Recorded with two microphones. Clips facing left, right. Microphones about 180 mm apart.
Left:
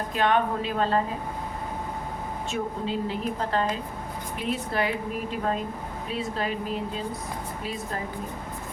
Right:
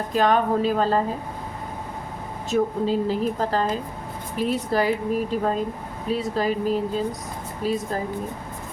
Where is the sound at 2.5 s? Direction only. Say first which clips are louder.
Right 9 dB; 40° right (ahead or behind).